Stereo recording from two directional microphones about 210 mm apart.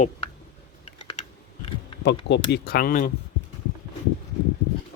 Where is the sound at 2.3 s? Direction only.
50° left (ahead or behind).